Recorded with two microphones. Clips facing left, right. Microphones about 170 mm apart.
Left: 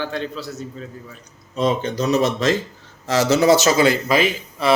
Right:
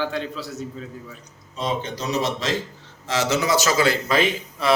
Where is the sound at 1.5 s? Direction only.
50° left (ahead or behind).